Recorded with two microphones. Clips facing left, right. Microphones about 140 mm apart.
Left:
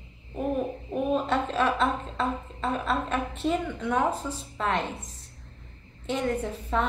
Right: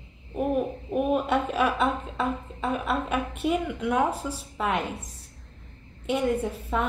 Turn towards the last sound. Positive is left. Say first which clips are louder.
# even
turn(degrees=-5)  # may be behind; listen again after turning